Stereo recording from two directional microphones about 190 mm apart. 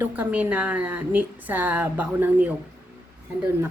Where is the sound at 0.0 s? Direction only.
10° right (ahead or behind).